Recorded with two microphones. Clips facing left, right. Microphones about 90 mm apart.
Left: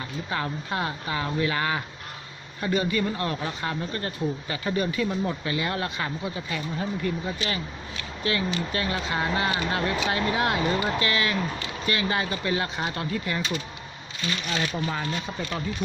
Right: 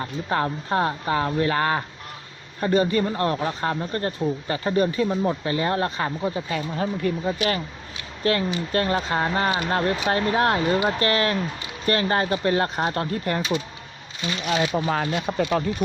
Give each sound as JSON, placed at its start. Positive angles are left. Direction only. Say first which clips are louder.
{"t": 0.0, "sound": "speech", "louder": "right 6 dB", "side_deg": -40}
{"t": 8.2, "sound": "speech", "louder": "right 4 dB", "side_deg": -45}
{"t": 14.5, "sound": "speech", "louder": "right 7 dB", "side_deg": -20}
{"t": 14.9, "sound": "speech", "louder": "right 6 dB", "side_deg": -60}